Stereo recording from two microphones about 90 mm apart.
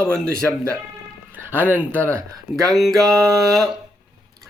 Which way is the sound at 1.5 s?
20° right (ahead or behind).